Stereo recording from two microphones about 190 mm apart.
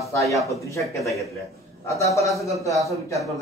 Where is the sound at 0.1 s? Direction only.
15° left (ahead or behind).